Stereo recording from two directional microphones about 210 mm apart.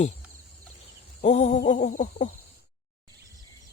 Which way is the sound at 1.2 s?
35° left (ahead or behind).